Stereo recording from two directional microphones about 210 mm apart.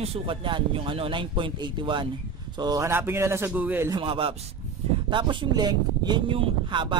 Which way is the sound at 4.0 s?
25° right (ahead or behind).